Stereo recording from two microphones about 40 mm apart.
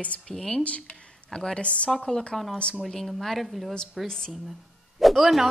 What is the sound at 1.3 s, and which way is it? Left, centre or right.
Speech, left.